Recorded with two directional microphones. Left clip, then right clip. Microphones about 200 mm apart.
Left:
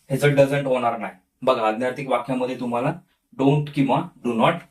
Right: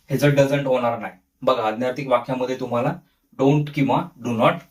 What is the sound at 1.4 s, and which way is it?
Speech, 15° left (ahead or behind).